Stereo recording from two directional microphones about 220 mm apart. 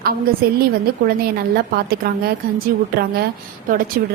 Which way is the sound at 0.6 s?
45° right (ahead or behind).